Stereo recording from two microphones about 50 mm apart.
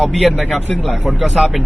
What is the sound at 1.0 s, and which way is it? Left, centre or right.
Speech, centre.